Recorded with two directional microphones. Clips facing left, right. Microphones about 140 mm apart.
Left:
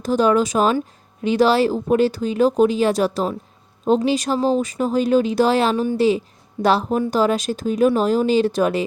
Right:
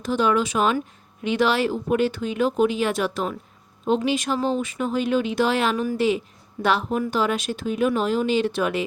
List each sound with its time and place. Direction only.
0.0 s speech: 40° left (ahead or behind)